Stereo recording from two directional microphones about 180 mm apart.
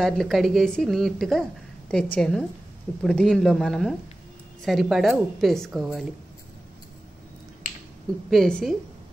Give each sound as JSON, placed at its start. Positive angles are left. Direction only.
{"t": 0.0, "sound": "a woman's voice", "side_deg": 0}
{"t": 8.3, "sound": "a woman's voice", "side_deg": 5}